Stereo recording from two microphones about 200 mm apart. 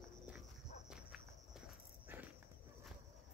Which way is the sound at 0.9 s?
5° right (ahead or behind).